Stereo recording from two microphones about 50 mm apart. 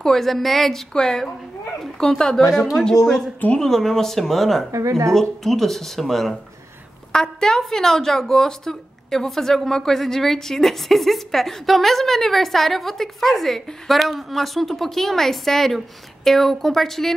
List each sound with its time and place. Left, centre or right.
0.0 s a woman's voice: centre
4.7 s a woman's voice: right
5.4 s a woman's voice: centre